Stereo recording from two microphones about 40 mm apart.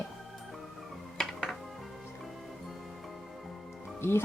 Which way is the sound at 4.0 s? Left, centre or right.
Left.